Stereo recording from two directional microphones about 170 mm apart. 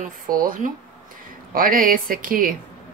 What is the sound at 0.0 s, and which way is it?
Speech, 55° right (ahead or behind).